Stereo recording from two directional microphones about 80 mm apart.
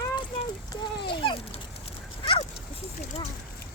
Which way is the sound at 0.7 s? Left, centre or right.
Left.